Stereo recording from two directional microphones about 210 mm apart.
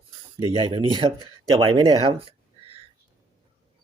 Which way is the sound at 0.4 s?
25° right (ahead or behind).